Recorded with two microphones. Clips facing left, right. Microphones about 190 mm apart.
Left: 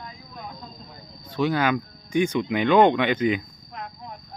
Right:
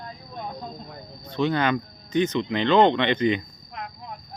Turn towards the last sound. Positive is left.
turn(degrees=5)  # may be behind; listen again after turning